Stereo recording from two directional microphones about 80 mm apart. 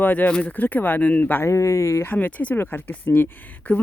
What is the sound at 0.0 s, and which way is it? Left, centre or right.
Speech, left.